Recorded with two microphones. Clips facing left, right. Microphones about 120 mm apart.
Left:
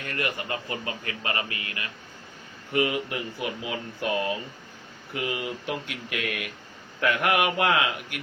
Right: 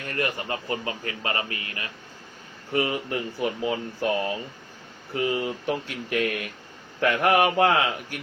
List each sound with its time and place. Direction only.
0.0 s speech: 30° right (ahead or behind)
5.1 s speech: 35° right (ahead or behind)